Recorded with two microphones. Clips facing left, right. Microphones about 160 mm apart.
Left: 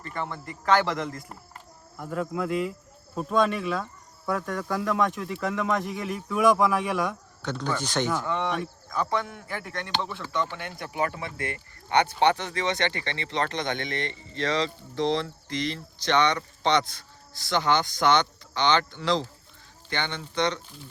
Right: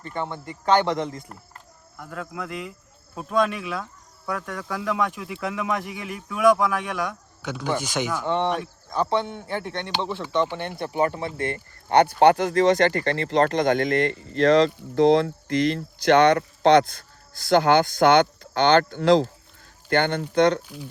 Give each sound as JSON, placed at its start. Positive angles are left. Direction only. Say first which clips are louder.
{"t": 0.1, "sound": "speech", "louder": "right 3 dB", "side_deg": -25}
{"t": 1.3, "sound": "a sound", "louder": "even", "side_deg": 5}
{"t": 2.3, "sound": "speech", "louder": "left 6 dB", "side_deg": 5}
{"t": 7.4, "sound": "speech", "louder": "right 3 dB", "side_deg": -10}
{"t": 8.2, "sound": "speech", "louder": "right 4 dB", "side_deg": -25}